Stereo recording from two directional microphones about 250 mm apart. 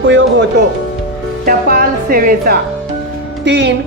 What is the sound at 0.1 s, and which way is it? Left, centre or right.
Music, right.